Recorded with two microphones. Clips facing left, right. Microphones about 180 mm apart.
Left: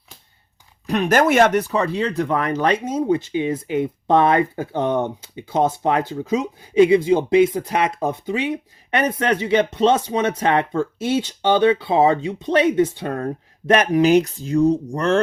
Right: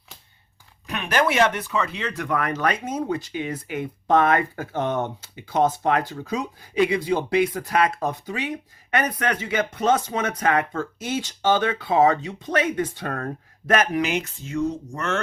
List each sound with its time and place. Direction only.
0.9 s speech: 40° left (ahead or behind); by 13.3 s 25° left (ahead or behind)
14.0 s speech: 35° left (ahead or behind)